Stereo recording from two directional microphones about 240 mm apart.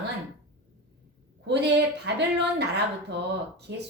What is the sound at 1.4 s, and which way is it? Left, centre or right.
A woman's voice, right.